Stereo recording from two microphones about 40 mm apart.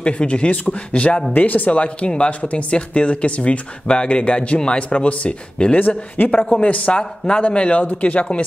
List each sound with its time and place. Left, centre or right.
0.0 s a man's voice: left
1.8 s a man's voice: left
6.6 s a man's voice: left